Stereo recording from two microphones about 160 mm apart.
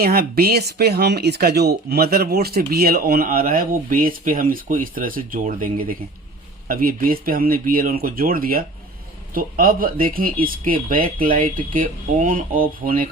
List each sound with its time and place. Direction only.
0.0 s speech: 75° right (ahead or behind)